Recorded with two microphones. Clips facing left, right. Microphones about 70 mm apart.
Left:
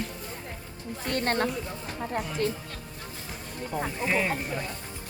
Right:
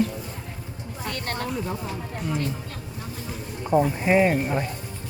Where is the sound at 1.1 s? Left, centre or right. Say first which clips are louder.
Left 6 dB; left.